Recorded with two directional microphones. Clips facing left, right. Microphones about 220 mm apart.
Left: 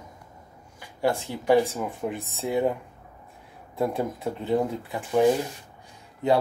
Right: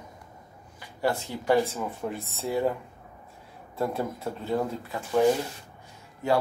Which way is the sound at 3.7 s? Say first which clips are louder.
Left 3 dB; 15° left (ahead or behind).